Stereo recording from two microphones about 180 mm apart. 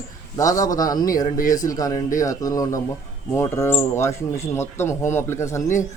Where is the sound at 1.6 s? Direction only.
20° left (ahead or behind).